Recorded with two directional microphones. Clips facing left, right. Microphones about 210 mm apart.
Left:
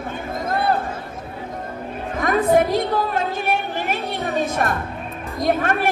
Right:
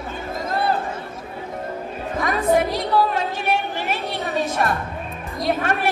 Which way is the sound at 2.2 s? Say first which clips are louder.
Left 3 dB; 55° left (ahead or behind).